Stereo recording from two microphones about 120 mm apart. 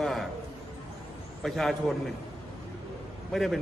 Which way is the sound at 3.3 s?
Centre (ahead or behind).